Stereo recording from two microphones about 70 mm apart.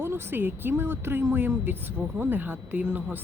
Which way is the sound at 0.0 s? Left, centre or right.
Right.